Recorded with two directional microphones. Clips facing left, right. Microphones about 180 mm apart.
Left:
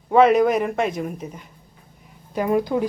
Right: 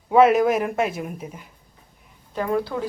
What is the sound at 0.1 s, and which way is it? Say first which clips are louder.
A woman's voice: left 1 dB; 5° right (ahead or behind).